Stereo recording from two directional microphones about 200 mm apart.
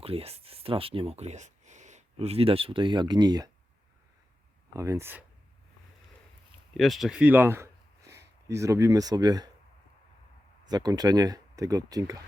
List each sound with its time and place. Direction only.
0.0 s speech: 30° right (ahead or behind)
4.7 s speech: 15° right (ahead or behind)
6.7 s speech: centre (ahead or behind); by 9.5 s 20° right (ahead or behind)
10.7 s speech: 20° right (ahead or behind)